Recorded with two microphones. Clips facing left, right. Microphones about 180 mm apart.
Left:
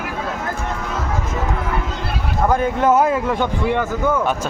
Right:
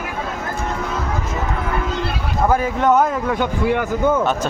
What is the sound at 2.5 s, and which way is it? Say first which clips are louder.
Speech: even; centre (ahead or behind).